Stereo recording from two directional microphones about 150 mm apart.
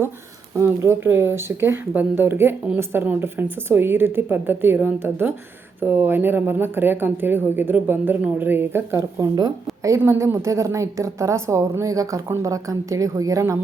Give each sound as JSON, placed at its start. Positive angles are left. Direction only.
{"t": 0.8, "sound": "a woman's voice", "side_deg": -15}